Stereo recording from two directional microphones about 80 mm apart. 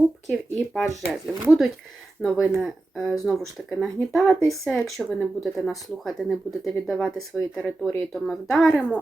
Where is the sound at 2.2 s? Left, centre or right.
Centre.